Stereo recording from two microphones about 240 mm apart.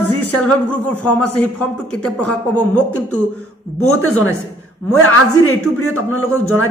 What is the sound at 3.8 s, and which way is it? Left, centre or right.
A man's voice, left.